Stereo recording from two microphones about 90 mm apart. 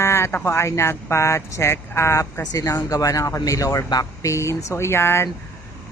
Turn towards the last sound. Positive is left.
turn(degrees=25)  # may be behind; listen again after turning